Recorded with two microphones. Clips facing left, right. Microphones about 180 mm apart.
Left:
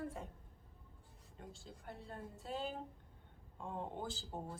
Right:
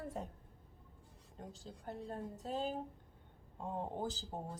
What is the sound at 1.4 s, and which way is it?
Speech, 40° right (ahead or behind).